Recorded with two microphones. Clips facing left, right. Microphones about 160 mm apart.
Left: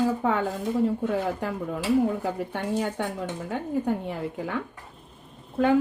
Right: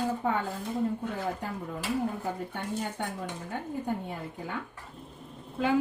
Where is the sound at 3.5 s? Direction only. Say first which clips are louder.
Left 7 dB; 90° left.